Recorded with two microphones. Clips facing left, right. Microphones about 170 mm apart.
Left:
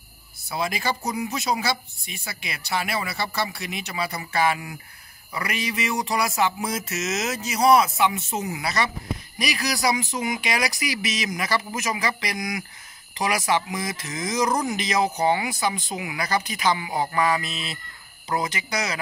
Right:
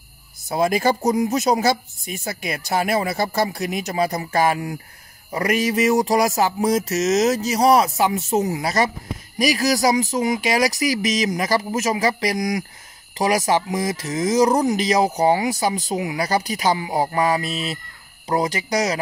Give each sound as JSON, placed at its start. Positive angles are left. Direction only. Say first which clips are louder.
{"t": 0.5, "sound": "speech", "louder": "right 8 dB", "side_deg": -45}